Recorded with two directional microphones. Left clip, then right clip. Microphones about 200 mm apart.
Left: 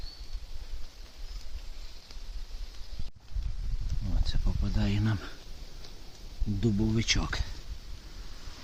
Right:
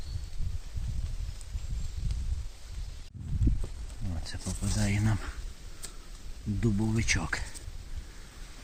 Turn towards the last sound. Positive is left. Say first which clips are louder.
# even
turn(degrees=-10)  # may be behind; listen again after turning